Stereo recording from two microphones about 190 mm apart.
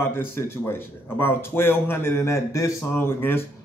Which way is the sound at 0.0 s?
10° left (ahead or behind).